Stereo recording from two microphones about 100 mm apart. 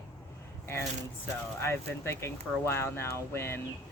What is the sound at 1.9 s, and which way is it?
Speech, 25° left (ahead or behind).